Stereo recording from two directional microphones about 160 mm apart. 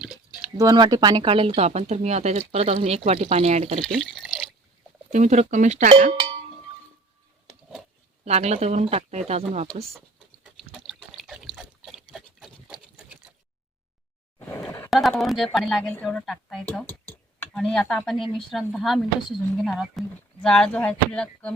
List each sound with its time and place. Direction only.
0.5 s speech: 25° right (ahead or behind); by 3.8 s 40° right (ahead or behind)
3.8 s drip: 5° left (ahead or behind)
5.1 s speech: 45° right (ahead or behind)
8.2 s speech: 40° right (ahead or behind)
10.4 s water: centre (ahead or behind)
11.2 s pig: centre (ahead or behind)
14.3 s a sound: 15° left (ahead or behind)
14.8 s a sound: centre (ahead or behind)
15.1 s speech: centre (ahead or behind)